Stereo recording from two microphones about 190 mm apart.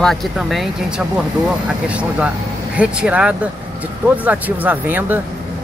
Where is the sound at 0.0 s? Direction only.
Centre (ahead or behind).